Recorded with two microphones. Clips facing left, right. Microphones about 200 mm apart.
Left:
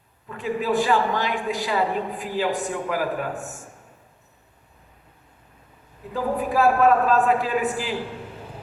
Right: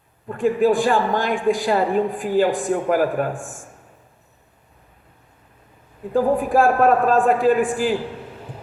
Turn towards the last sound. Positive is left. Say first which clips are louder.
# right 7 dB
turn(degrees=-50)  # may be behind; listen again after turning